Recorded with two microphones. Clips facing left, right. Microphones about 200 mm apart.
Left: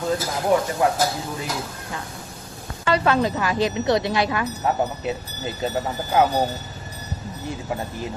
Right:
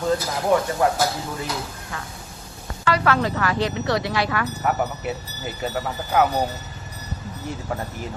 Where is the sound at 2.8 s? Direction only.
25° left (ahead or behind).